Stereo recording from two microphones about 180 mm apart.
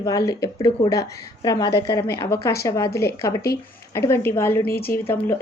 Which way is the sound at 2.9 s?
60° left (ahead or behind).